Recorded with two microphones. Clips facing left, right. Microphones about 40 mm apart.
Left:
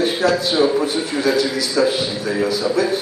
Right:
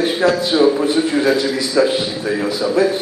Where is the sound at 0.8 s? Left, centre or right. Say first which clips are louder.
Right 4 dB; right.